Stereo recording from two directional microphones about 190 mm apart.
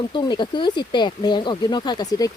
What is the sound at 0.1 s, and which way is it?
Speech, 25° left (ahead or behind).